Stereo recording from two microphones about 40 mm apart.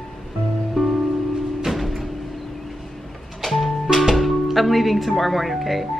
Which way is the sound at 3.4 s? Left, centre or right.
Centre.